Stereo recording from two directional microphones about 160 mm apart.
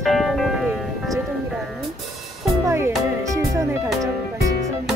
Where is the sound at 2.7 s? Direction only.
15° right (ahead or behind).